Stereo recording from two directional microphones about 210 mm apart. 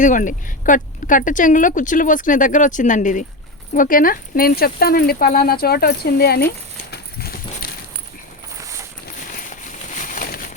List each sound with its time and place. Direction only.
0.0 s speech: 40° left (ahead or behind)
6.9 s clip-clop: 45° left (ahead or behind)
9.2 s a sound: 40° left (ahead or behind)